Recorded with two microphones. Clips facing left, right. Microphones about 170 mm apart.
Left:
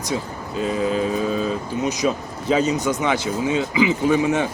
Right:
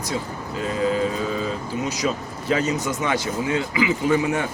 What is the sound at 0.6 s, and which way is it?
Speech, 20° left (ahead or behind).